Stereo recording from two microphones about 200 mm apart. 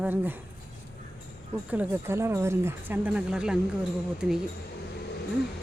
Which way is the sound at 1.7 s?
10° right (ahead or behind).